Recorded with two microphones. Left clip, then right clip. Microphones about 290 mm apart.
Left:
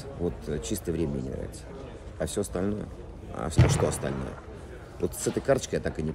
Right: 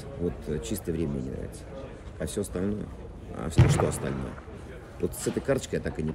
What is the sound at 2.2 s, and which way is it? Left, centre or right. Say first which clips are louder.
Speech: left 2 dB; centre.